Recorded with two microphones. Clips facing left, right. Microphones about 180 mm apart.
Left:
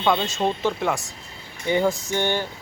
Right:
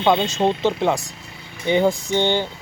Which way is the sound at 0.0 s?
20° right (ahead or behind).